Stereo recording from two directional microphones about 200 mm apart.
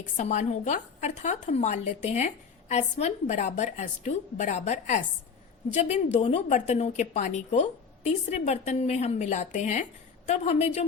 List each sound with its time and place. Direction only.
0.2 s a woman's voice: 35° left (ahead or behind)